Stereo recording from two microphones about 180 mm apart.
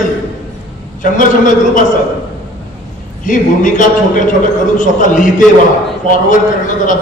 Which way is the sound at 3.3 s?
45° left (ahead or behind).